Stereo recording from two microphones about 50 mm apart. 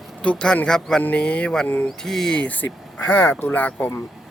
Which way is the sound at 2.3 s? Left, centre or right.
Left.